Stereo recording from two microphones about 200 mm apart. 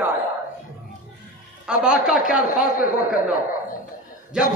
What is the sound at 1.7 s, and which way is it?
Speech, 5° right (ahead or behind).